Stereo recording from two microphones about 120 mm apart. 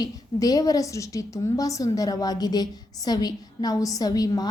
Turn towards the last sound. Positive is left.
turn(degrees=30)  # may be behind; listen again after turning